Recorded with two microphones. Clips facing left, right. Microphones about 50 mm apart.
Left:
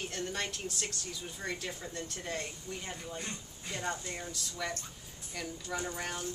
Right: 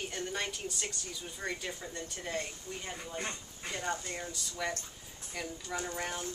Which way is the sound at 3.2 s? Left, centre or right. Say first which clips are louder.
Right 3 dB; right.